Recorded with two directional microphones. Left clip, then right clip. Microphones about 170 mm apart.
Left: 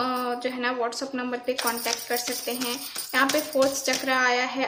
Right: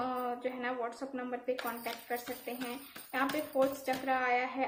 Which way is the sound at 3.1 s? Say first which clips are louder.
Left 10 dB; 25° left (ahead or behind).